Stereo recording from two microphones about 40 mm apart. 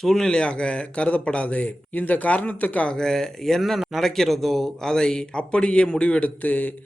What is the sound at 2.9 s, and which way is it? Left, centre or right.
A man's voice, centre.